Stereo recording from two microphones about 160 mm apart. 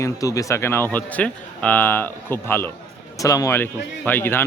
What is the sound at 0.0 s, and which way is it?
Speech, 20° left (ahead or behind).